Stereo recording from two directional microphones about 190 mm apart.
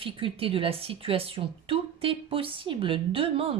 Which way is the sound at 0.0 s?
30° right (ahead or behind).